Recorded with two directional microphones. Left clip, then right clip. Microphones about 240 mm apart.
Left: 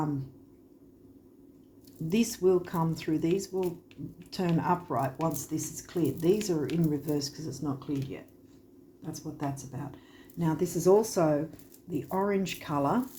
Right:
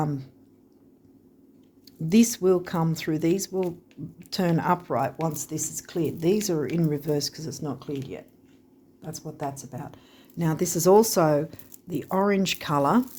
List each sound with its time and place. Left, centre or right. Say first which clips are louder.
2.0 s speech: right 5 dB; right